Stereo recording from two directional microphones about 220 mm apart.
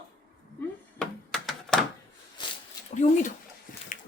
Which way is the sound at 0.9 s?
Centre (ahead or behind).